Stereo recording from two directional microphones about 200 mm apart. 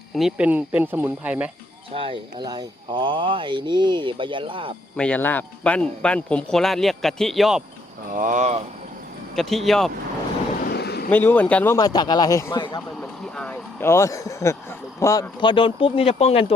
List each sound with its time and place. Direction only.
0.2 s speech: 5° right (ahead or behind)
1.9 s speech: 25° right (ahead or behind)
4.9 s speech: 5° left (ahead or behind)
8.1 s speech: 40° right (ahead or behind)
9.3 s speech: centre (ahead or behind)
10.6 s vehicle: 50° left (ahead or behind)
11.1 s a man's voice: 10° left (ahead or behind); by 16.5 s 30° left (ahead or behind)